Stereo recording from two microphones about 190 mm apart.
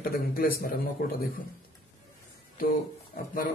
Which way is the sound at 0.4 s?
50° left (ahead or behind).